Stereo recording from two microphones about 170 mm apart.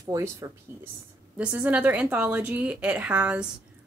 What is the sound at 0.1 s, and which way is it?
Speech, 15° right (ahead or behind).